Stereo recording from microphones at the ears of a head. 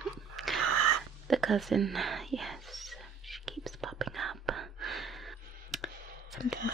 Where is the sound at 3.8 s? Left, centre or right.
Right.